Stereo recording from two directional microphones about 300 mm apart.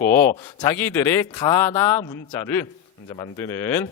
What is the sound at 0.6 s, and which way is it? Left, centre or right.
Speech, centre.